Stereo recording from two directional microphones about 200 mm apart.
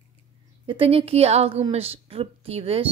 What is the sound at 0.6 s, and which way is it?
A woman's voice, 25° right (ahead or behind).